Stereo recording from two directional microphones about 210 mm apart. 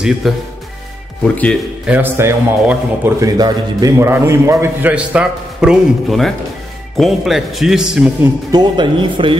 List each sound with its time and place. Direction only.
0.2 s speech: centre (ahead or behind)
1.9 s a man's voice: 10° right (ahead or behind)
8.5 s speech: 20° right (ahead or behind)